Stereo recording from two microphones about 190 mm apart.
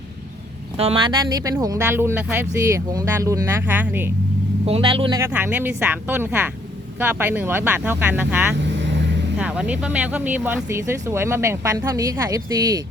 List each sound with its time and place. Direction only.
0.8 s speech: 30° right (ahead or behind); by 4.1 s 10° right (ahead or behind)
4.6 s speech: 30° right (ahead or behind)
5.1 s speech: 10° right (ahead or behind)
8.8 s vehicle: 70° right (ahead or behind)
9.4 s speech: 5° right (ahead or behind)